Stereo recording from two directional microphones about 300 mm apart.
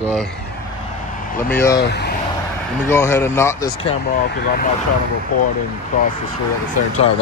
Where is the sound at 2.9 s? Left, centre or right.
Centre.